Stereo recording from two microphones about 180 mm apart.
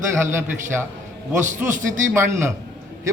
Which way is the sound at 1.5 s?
45° right (ahead or behind).